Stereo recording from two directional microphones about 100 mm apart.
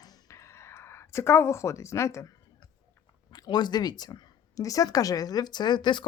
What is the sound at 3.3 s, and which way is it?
Speech, 45° left (ahead or behind).